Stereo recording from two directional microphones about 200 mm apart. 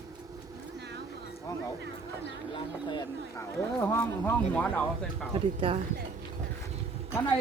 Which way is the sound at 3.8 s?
10° left (ahead or behind).